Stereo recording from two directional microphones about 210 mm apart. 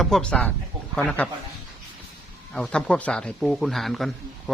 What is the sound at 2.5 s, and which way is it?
Speech, 5° left (ahead or behind).